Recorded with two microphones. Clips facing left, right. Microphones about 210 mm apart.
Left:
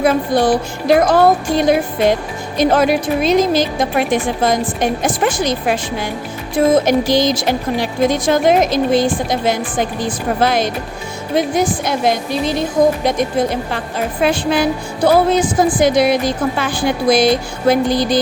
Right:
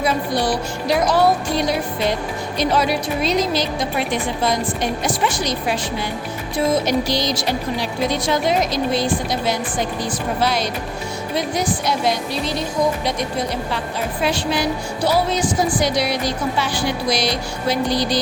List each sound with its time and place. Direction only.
0.0 s a woman's voice: 50° left (ahead or behind)